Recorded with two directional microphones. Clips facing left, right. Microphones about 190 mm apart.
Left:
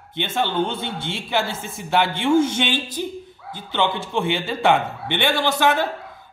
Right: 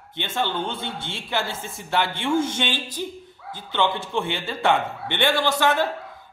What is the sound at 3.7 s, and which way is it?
A man's voice, 20° left (ahead or behind).